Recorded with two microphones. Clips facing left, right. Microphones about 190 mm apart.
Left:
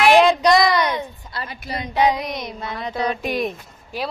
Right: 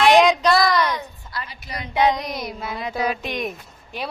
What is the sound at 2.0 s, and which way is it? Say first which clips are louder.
A woman's voice: even; 10° left (ahead or behind).